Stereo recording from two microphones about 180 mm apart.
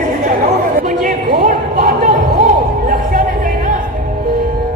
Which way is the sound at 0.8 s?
45° right (ahead or behind).